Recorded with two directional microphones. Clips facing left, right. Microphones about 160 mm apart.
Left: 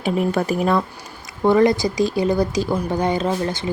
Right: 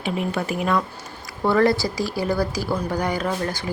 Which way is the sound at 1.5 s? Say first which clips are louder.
Left 3 dB; 20° left (ahead or behind).